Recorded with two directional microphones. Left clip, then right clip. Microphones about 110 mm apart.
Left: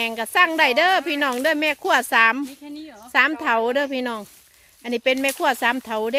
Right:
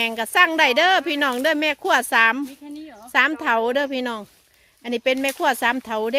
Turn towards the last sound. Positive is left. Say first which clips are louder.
# even
turn(degrees=-5)  # may be behind; listen again after turning